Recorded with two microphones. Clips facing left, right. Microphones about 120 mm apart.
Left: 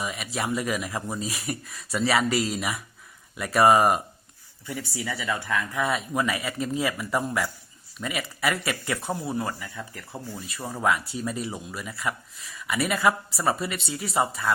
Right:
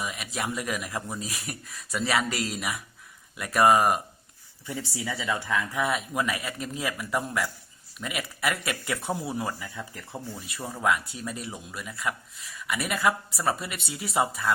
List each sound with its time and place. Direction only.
0.0 s speech: centre (ahead or behind)
4.6 s speech: 25° right (ahead or behind)
5.8 s speech: centre (ahead or behind); by 10.2 s 15° right (ahead or behind)
10.6 s speech: 5° left (ahead or behind)